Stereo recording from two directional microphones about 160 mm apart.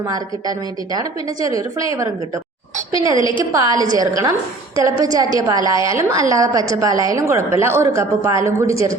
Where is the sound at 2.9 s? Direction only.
20° right (ahead or behind).